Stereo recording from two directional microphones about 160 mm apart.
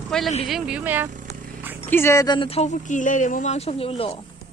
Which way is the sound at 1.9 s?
15° left (ahead or behind).